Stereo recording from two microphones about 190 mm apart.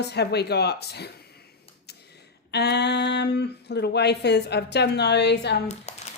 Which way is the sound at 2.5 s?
60° left (ahead or behind).